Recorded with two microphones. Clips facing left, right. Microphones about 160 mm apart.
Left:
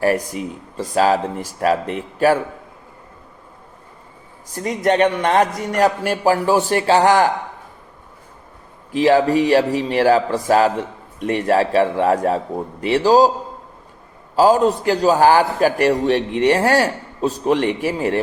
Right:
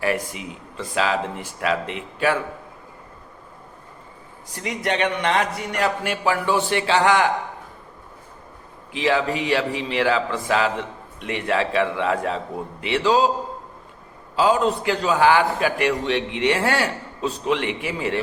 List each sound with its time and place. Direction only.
0.0 s a man's voice: 40° left (ahead or behind)
4.5 s a man's voice: 40° left (ahead or behind)
8.9 s a man's voice: 40° left (ahead or behind)
14.3 s a man's voice: 40° left (ahead or behind)